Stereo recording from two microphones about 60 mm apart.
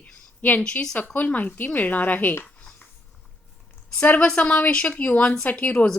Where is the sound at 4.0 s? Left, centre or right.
Centre.